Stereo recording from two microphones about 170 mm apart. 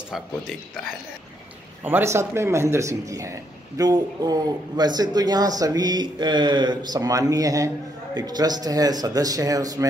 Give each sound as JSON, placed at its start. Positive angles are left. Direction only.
{"t": 1.8, "sound": "a man's voice", "side_deg": -10}